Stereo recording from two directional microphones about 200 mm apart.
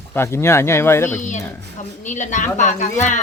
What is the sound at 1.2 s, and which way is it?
A woman's voice, 40° left (ahead or behind).